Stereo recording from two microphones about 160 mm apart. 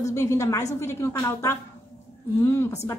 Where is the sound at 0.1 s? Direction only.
20° left (ahead or behind).